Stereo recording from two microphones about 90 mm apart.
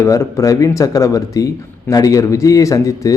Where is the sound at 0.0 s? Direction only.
35° left (ahead or behind).